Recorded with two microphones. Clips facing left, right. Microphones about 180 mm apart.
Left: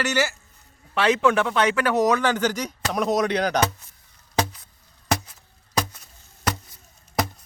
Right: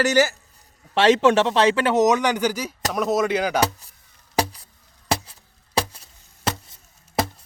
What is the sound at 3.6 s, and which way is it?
Speech, 35° right (ahead or behind).